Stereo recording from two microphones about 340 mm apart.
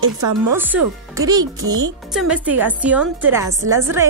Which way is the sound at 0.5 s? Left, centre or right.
Centre.